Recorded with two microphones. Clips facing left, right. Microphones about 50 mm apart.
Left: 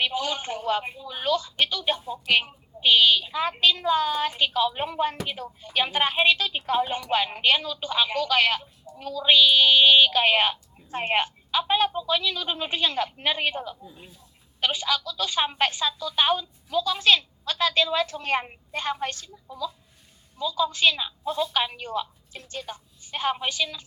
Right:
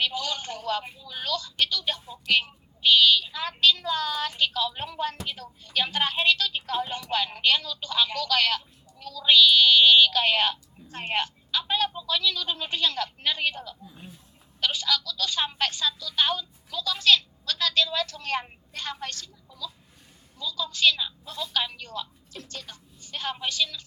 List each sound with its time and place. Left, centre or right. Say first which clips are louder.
0.0 s a woman's voice: left 2 dB; left